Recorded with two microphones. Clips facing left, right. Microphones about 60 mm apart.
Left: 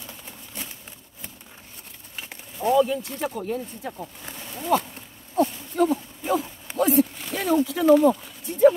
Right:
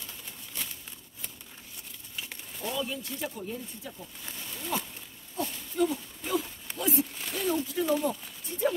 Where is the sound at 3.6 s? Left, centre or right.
Left.